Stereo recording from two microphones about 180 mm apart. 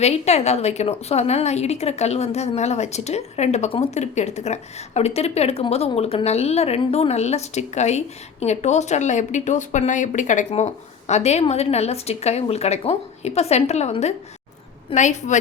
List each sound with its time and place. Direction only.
0.0 s a woman's voice: 35° left (ahead or behind)